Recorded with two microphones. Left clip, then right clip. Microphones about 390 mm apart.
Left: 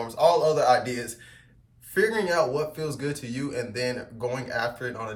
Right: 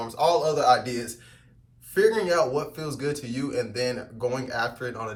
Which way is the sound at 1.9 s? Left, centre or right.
Centre.